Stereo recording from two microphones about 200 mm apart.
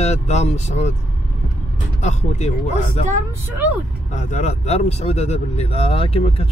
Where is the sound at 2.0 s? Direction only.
35° left (ahead or behind).